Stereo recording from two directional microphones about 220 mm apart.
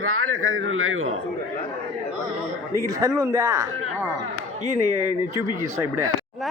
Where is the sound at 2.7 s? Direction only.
15° right (ahead or behind).